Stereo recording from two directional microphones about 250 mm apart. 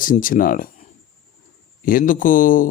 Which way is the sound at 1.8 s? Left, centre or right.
Left.